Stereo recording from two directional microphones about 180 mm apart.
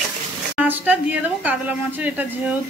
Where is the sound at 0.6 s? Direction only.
10° right (ahead or behind).